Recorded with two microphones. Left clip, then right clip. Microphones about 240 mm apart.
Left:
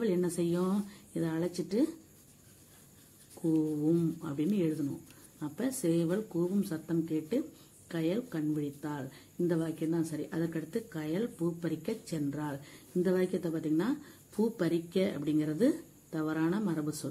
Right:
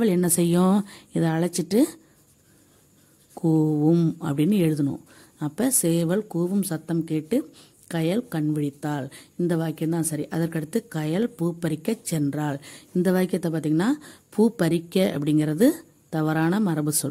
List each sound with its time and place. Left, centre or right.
0.0 s speech: right
3.4 s speech: right